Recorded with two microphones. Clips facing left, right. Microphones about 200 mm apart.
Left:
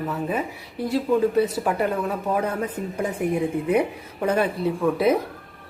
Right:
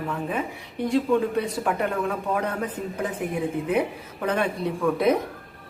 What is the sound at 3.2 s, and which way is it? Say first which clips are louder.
Speech: left 8 dB; 50° left (ahead or behind).